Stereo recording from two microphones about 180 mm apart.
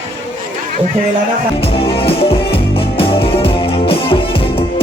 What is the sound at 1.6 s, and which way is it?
Music, 30° left (ahead or behind).